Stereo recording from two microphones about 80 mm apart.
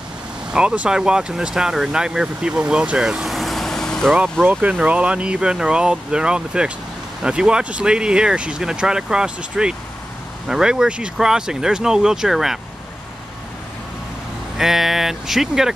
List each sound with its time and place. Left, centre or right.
0.5 s speech: centre
4.2 s speech: right; by 12.5 s centre
14.6 s speech: centre